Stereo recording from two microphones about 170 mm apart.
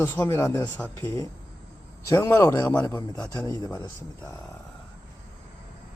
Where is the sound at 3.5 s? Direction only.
25° left (ahead or behind).